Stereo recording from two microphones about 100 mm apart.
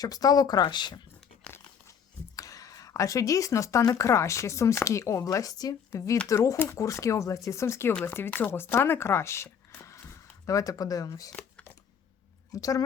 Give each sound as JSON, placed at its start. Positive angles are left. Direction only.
{"t": 0.0, "sound": "speech", "side_deg": 40}
{"t": 2.3, "sound": "speech", "side_deg": 35}
{"t": 5.9, "sound": "speech", "side_deg": 25}
{"t": 12.5, "sound": "a woman's voice", "side_deg": 35}